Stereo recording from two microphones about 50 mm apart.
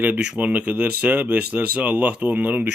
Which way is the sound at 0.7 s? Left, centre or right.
Right.